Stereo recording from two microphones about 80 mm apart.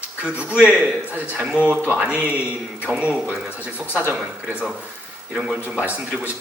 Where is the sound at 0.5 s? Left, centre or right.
Centre.